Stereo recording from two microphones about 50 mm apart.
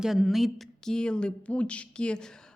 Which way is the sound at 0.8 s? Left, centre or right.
Centre.